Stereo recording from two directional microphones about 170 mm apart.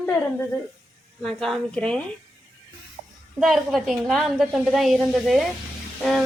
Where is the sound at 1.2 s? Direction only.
Centre (ahead or behind).